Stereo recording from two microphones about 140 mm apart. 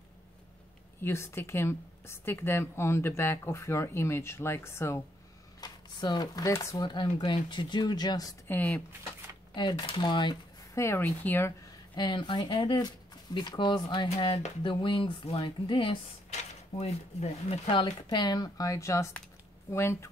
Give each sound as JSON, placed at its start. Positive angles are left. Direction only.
{"t": 1.0, "sound": "speech", "side_deg": 20}
{"t": 5.6, "sound": "speech", "side_deg": 30}
{"t": 8.5, "sound": "speech", "side_deg": 10}
{"t": 9.5, "sound": "speech", "side_deg": 30}
{"t": 10.8, "sound": "speech", "side_deg": 15}
{"t": 11.9, "sound": "speech", "side_deg": 35}
{"t": 17.8, "sound": "speech", "side_deg": 30}